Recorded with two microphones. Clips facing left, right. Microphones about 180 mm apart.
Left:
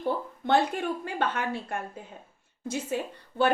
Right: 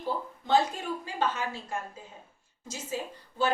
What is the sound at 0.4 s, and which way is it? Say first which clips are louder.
A woman's voice: left 2 dB; 60° left (ahead or behind).